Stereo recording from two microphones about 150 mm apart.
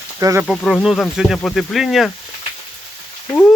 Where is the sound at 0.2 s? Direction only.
20° right (ahead or behind).